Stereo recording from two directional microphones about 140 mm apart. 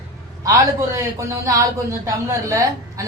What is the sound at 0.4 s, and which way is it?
A man's voice, 20° right (ahead or behind).